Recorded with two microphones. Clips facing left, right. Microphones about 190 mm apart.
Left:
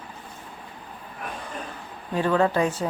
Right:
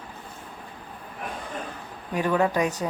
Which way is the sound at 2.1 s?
15° right (ahead or behind).